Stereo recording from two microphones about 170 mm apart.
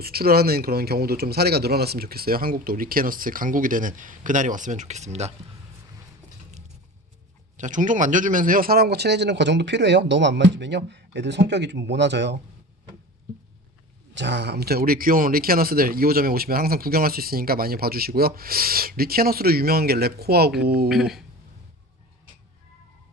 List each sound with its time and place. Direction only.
0.0 s speech: 65° right (ahead or behind); by 5.3 s 40° right (ahead or behind)
7.5 s speech: 45° right (ahead or behind); by 12.4 s 90° right
14.2 s speech: 90° right; by 20.9 s 65° right (ahead or behind)
20.9 s speech: centre (ahead or behind)